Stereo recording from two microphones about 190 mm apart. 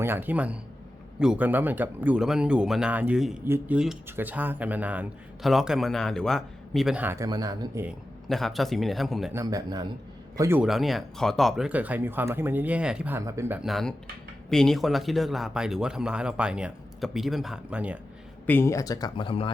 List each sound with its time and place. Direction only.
0.0 s speech: 10° right (ahead or behind)
8.3 s speech: centre (ahead or behind)
9.3 s a man's voice: 20° right (ahead or behind)
10.6 s speech: centre (ahead or behind)
13.6 s speech: centre (ahead or behind)
18.4 s speech: 10° left (ahead or behind)